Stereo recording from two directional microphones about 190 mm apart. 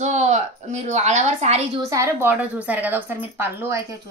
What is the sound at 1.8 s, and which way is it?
A woman's voice, 15° right (ahead or behind).